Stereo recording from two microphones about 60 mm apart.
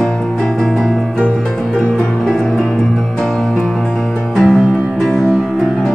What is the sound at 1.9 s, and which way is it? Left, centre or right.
Music, centre.